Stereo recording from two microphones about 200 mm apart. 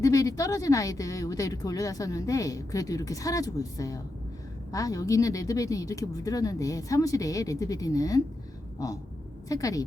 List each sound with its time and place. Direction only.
0.0 s speech: 15° left (ahead or behind)
9.5 s speech: 15° left (ahead or behind)